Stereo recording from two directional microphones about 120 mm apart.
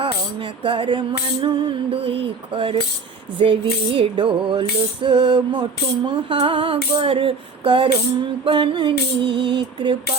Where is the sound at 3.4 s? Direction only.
50° right (ahead or behind).